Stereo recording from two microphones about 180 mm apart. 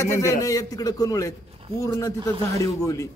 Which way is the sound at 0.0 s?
15° left (ahead or behind).